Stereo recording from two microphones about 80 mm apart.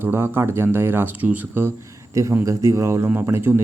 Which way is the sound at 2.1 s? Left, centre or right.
Right.